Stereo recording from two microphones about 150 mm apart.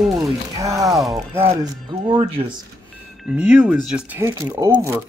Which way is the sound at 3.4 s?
10° right (ahead or behind).